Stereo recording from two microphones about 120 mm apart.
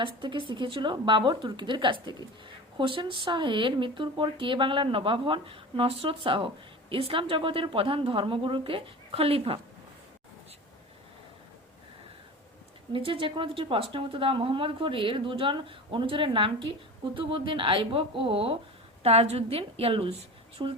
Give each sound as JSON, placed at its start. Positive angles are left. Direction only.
{"t": 0.0, "sound": "a woman's voice", "side_deg": -45}
{"t": 12.9, "sound": "a woman's voice", "side_deg": -45}
{"t": 20.6, "sound": "speech", "side_deg": -40}